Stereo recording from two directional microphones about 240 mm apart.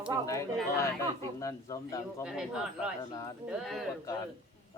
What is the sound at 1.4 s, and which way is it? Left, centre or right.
Speech, centre.